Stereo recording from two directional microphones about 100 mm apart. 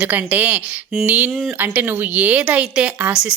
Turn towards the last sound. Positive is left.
turn(degrees=-10)  # may be behind; listen again after turning